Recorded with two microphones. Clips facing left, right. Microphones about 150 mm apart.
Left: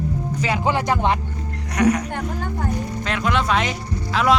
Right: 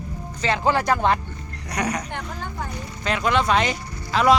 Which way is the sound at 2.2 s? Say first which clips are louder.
Left 5 dB; 50° left (ahead or behind).